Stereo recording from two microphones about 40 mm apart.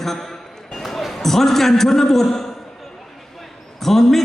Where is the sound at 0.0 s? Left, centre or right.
Centre.